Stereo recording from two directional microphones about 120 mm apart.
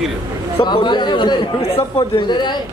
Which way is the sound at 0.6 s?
40° left (ahead or behind).